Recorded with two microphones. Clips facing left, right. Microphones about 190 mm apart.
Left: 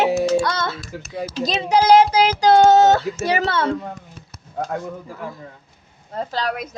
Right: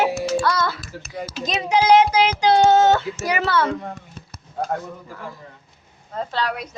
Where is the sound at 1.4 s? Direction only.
35° left (ahead or behind).